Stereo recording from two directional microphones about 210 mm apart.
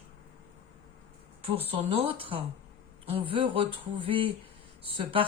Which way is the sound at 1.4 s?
25° right (ahead or behind).